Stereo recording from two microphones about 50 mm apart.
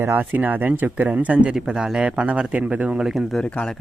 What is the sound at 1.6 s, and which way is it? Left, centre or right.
A man's voice, centre.